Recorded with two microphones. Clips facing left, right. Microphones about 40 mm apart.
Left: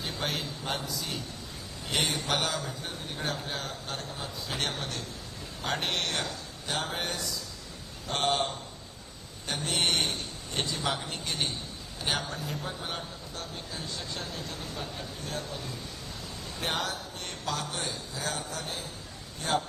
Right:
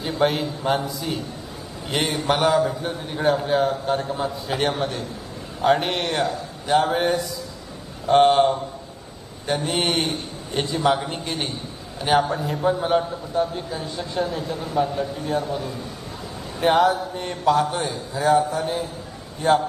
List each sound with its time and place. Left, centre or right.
0.0 s a man's voice: centre